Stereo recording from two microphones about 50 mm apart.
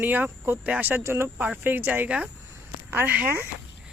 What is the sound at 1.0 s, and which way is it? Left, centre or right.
Speech, right.